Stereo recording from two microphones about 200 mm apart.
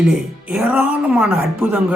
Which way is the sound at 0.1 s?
5° right (ahead or behind).